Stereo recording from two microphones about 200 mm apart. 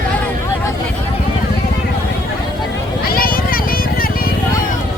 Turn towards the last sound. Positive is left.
turn(degrees=45)  # may be behind; listen again after turning